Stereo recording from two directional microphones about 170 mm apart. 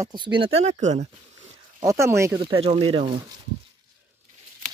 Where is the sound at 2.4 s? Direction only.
30° right (ahead or behind).